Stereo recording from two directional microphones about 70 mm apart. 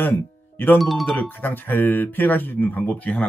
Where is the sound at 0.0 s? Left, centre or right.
Left.